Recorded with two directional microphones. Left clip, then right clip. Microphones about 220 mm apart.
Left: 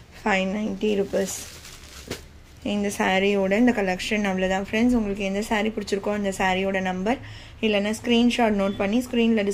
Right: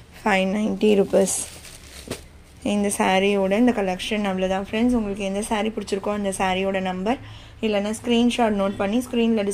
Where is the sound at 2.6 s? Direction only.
15° right (ahead or behind).